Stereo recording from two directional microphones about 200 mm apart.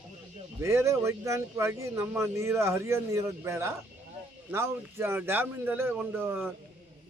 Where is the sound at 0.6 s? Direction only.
15° right (ahead or behind).